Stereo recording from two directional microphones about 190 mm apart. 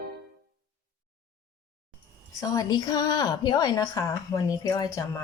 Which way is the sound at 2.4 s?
20° left (ahead or behind).